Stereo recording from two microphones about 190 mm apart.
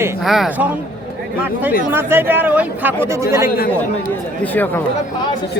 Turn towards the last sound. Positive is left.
turn(degrees=10)  # may be behind; listen again after turning